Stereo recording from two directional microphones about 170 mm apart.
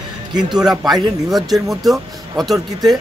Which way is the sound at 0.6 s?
Centre (ahead or behind).